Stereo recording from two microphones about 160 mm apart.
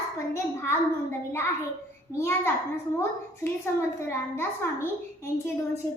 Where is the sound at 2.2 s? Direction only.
15° left (ahead or behind).